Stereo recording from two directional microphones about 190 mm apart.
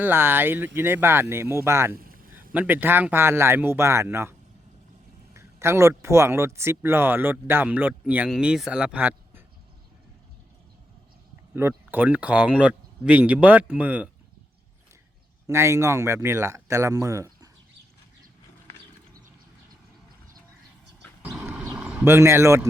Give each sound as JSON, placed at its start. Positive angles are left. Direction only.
{"t": 0.0, "sound": "speech", "side_deg": -10}
{"t": 2.0, "sound": "a sound", "side_deg": -50}
{"t": 2.5, "sound": "speech", "side_deg": -10}
{"t": 11.9, "sound": "speech", "side_deg": -10}
{"t": 15.4, "sound": "speech", "side_deg": -15}
{"t": 21.2, "sound": "a sound", "side_deg": -10}